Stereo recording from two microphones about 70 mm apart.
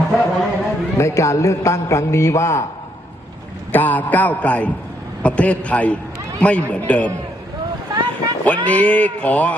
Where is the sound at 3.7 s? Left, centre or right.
Left.